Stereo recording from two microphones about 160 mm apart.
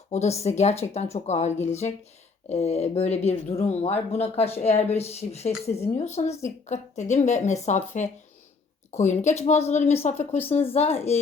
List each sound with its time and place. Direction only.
0.1 s a woman's voice: 45° left (ahead or behind)
10.2 s speech: 10° left (ahead or behind)
10.5 s speech: 40° left (ahead or behind)